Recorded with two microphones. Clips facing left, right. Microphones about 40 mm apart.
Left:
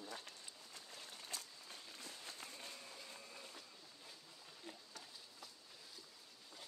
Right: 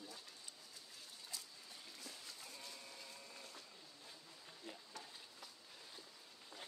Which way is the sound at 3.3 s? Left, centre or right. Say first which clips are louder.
Left 1 dB; centre.